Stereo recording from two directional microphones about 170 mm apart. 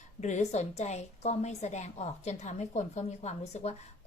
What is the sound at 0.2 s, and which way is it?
A woman's voice, 45° left (ahead or behind).